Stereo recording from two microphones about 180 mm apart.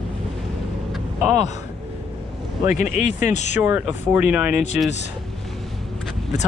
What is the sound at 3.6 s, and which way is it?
Speech, 10° right (ahead or behind).